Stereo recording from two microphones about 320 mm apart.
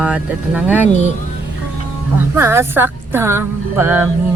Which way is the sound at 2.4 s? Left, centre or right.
Centre.